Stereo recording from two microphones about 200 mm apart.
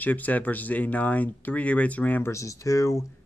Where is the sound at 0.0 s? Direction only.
10° left (ahead or behind).